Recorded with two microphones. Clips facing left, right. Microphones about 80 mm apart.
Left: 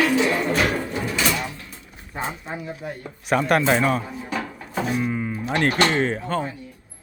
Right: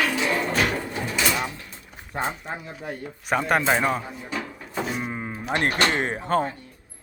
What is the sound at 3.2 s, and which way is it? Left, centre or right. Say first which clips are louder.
Speech: left 3 dB; centre.